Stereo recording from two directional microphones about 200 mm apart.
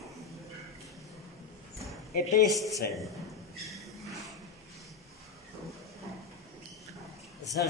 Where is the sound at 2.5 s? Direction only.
Centre (ahead or behind).